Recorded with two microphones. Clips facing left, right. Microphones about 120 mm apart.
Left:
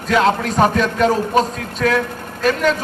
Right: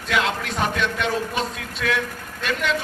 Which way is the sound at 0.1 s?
40° left (ahead or behind).